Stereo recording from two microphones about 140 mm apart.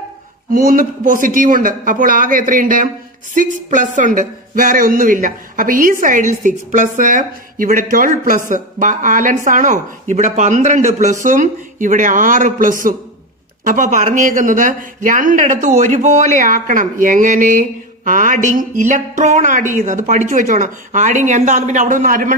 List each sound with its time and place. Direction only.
0.5 s speech: 90° right; by 11.1 s 55° right (ahead or behind)
11.2 s a man's voice: 65° right (ahead or behind)